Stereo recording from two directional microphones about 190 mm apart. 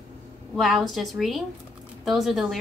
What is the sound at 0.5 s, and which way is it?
A woman's voice, centre (ahead or behind).